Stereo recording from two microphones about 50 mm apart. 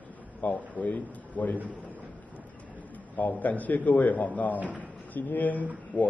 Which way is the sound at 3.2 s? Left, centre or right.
Left.